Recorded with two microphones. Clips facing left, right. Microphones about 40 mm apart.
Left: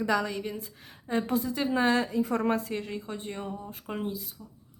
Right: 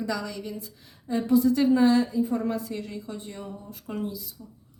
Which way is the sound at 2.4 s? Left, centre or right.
Left.